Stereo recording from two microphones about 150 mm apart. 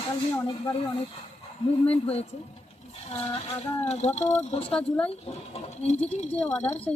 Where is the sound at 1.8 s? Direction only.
40° left (ahead or behind).